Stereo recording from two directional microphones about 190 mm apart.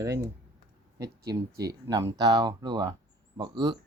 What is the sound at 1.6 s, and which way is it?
Speech, 20° right (ahead or behind).